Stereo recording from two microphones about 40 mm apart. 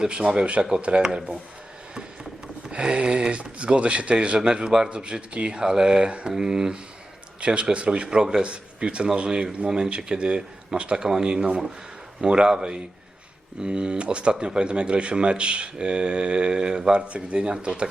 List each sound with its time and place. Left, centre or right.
0.1 s speech: right
2.6 s speech: right
7.4 s speech: right
8.0 s speech: centre